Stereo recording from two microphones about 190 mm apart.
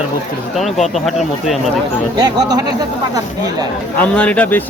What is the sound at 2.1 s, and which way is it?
Speech, 20° right (ahead or behind).